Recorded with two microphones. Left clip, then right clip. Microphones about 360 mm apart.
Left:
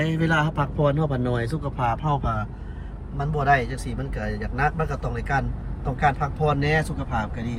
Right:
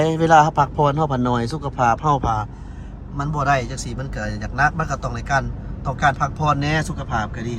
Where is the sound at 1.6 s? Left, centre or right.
Centre.